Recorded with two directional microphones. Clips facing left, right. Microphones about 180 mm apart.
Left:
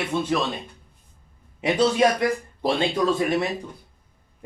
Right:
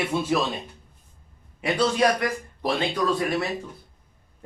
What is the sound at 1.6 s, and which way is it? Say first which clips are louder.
Speech: left 2 dB; 20° left (ahead or behind).